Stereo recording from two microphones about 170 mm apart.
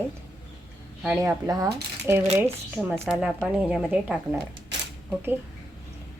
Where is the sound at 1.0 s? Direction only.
10° right (ahead or behind).